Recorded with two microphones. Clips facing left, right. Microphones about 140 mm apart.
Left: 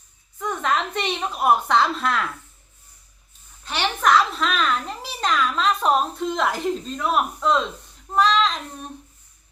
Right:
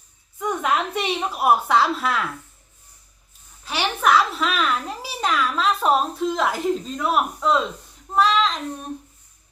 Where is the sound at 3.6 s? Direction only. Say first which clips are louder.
Even; 5° right (ahead or behind).